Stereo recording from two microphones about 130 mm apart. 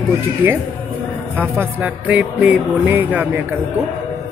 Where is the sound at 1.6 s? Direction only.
15° right (ahead or behind).